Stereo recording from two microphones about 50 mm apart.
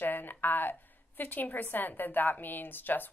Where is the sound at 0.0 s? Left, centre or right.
Left.